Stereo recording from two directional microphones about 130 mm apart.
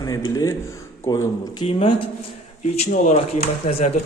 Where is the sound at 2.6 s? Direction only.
60° left (ahead or behind).